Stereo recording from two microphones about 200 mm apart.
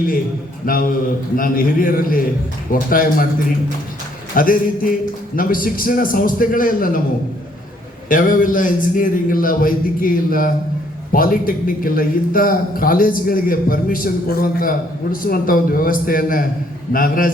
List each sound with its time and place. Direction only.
0.6 s a man's voice: 45° left (ahead or behind)
4.4 s a man's voice: 45° left (ahead or behind)
8.1 s a man's voice: 45° left (ahead or behind)